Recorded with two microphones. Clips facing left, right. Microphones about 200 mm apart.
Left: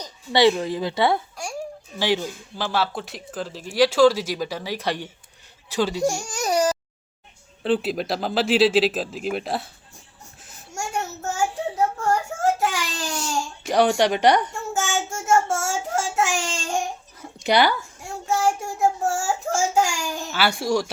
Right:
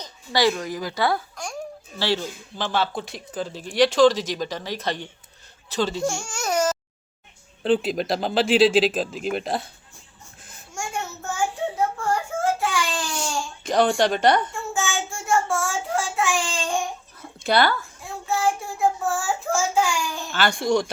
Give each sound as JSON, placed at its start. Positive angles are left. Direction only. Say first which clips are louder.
{"t": 0.3, "sound": "a woman's voice", "louder": "left 4 dB", "side_deg": 25}
{"t": 2.0, "sound": "speech", "louder": "left 2 dB", "side_deg": 15}
{"t": 2.6, "sound": "speech", "louder": "even", "side_deg": 5}
{"t": 6.1, "sound": "speech", "louder": "left 3 dB", "side_deg": 35}
{"t": 6.4, "sound": "baby cry", "louder": "left 2 dB", "side_deg": 15}
{"t": 7.6, "sound": "speech", "louder": "right 1 dB", "side_deg": 5}
{"t": 10.8, "sound": "child singing", "louder": "left 2 dB", "side_deg": 40}
{"t": 11.9, "sound": "a sound", "louder": "left 1 dB", "side_deg": 40}
{"t": 13.7, "sound": "speech", "louder": "left 1 dB", "side_deg": 10}
{"t": 14.5, "sound": "child singing", "louder": "left 1 dB", "side_deg": 40}
{"t": 17.2, "sound": "a sound", "louder": "left 1 dB", "side_deg": 15}
{"t": 18.0, "sound": "child singing", "louder": "left 2 dB", "side_deg": 45}
{"t": 20.3, "sound": "speech", "louder": "right 1 dB", "side_deg": 5}